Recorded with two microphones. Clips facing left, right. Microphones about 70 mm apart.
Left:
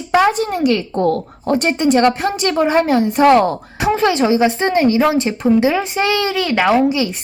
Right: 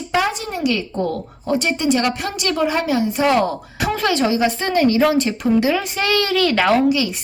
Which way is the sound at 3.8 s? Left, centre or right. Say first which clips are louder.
Left 4 dB; left.